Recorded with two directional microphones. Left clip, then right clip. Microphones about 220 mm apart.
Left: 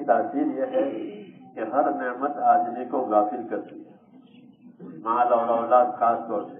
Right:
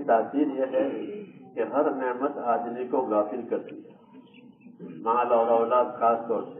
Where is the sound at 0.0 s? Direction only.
20° left (ahead or behind).